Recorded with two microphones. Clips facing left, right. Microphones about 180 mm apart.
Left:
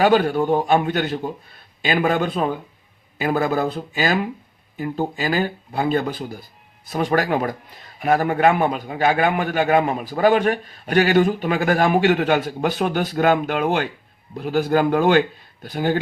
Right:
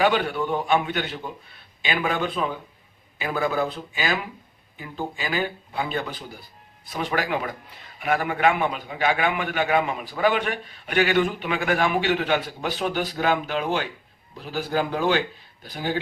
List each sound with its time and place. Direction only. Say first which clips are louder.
0.0 s a man's voice: left 5 dB; 40° left (ahead or behind)